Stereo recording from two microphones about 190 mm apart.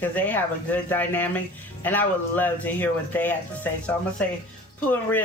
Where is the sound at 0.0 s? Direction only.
10° left (ahead or behind).